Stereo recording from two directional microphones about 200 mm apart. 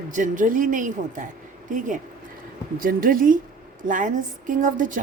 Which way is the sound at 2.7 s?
45° right (ahead or behind).